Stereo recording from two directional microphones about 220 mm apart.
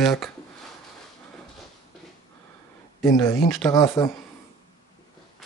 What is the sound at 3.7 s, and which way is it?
Speech, 20° left (ahead or behind).